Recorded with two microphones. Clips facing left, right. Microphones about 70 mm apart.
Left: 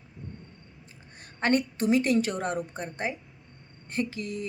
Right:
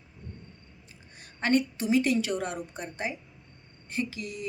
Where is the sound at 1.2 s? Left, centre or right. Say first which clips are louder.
Even; left.